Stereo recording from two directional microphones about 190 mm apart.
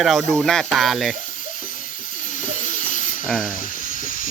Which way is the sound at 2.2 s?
45° left (ahead or behind).